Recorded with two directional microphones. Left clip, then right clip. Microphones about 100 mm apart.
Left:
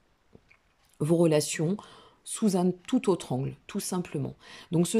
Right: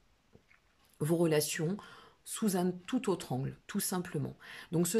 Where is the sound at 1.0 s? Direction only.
35° left (ahead or behind).